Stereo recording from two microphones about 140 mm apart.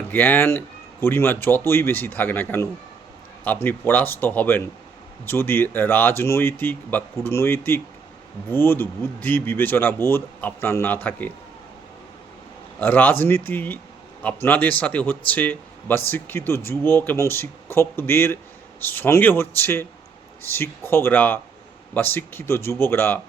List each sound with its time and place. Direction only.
0.1 s speech: 15° left (ahead or behind)
12.8 s speech: 15° left (ahead or behind)